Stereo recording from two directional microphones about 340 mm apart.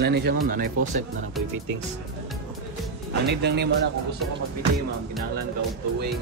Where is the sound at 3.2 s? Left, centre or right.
Right.